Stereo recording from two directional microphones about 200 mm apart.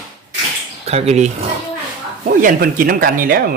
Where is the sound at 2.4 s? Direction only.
45° right (ahead or behind).